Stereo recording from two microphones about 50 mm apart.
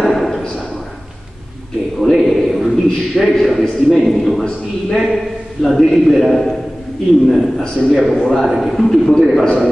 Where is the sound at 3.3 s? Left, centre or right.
Centre.